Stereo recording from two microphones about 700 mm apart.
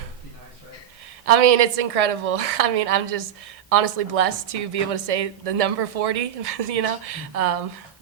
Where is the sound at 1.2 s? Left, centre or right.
Right.